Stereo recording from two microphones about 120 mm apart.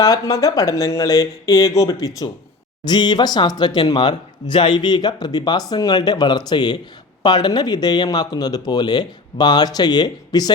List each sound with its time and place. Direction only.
0.0 s speech: 30° left (ahead or behind)